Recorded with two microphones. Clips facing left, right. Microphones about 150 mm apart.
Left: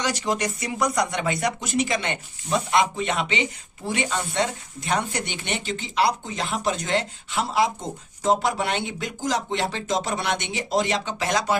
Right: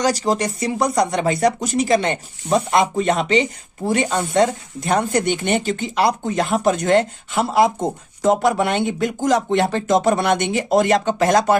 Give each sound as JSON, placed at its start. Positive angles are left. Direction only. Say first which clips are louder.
{"t": 0.0, "sound": "speech", "louder": "right 6 dB", "side_deg": -35}